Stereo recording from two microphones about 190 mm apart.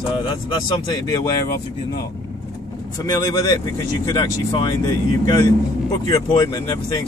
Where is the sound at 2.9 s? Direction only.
20° left (ahead or behind).